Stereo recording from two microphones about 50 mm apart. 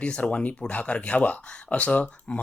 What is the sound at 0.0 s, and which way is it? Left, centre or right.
Speech, left.